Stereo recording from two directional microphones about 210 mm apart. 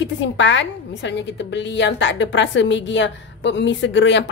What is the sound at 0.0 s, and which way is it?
A woman's voice, 60° left (ahead or behind).